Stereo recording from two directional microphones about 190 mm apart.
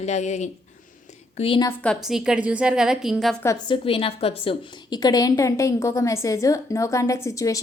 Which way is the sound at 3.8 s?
30° left (ahead or behind).